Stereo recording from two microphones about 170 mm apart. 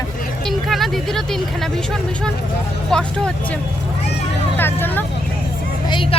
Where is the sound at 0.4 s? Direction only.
Centre (ahead or behind).